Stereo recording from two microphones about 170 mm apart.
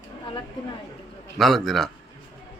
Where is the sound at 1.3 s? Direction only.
Centre (ahead or behind).